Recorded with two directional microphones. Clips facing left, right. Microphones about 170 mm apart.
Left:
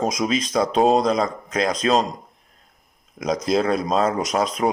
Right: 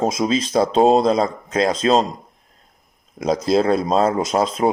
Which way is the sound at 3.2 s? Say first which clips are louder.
Right 3 dB; 30° right (ahead or behind).